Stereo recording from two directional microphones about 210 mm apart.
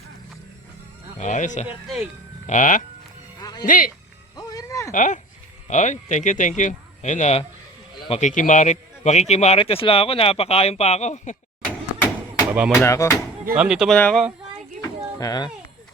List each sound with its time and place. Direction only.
1.2 s a man's voice: 35° left (ahead or behind)
1.6 s speech: centre (ahead or behind)
2.5 s a man's voice: 35° left (ahead or behind)
3.4 s music: 20° left (ahead or behind)
3.7 s a man's voice: 40° left (ahead or behind)
4.4 s a sound: 15° left (ahead or behind)
4.9 s a man's voice: 35° left (ahead or behind)
12.5 s speech: 5° right (ahead or behind)
12.8 s speech: 15° left (ahead or behind)
13.4 s speech: 10° right (ahead or behind)
14.8 s a sound: 15° left (ahead or behind)